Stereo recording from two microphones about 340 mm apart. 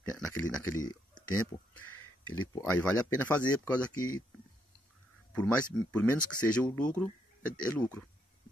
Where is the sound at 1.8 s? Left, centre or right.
Left.